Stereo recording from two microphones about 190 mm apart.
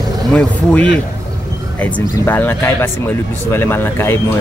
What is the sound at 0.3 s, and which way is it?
Speech, 5° left (ahead or behind).